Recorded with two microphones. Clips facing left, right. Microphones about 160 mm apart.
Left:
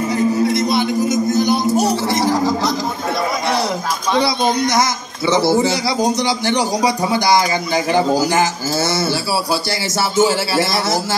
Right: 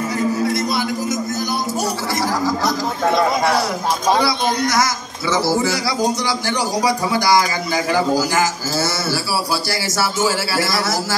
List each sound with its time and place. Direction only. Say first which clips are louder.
0.1 s music: left 4 dB; 20° left (ahead or behind)
4.2 s a sound: left 2 dB; 20° left (ahead or behind)
5.3 s speech: left 3 dB; 25° left (ahead or behind)